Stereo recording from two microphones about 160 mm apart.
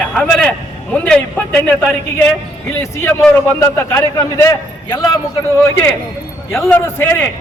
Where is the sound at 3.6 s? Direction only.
15° left (ahead or behind).